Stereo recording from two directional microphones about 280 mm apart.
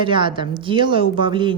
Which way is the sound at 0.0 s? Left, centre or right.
Centre.